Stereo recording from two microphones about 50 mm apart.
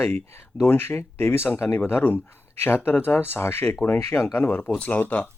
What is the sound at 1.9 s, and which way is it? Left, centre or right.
Speech, left.